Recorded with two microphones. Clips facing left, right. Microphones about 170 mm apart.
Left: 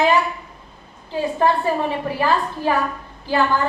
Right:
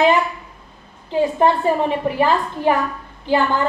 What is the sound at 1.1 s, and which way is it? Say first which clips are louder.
A woman's voice: right 3 dB; 20° right (ahead or behind).